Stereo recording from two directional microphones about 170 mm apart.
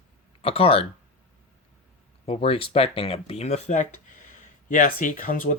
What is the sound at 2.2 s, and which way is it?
Speech, 35° left (ahead or behind).